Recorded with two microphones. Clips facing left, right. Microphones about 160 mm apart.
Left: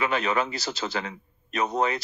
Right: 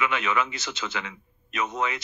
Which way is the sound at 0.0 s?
35° left (ahead or behind).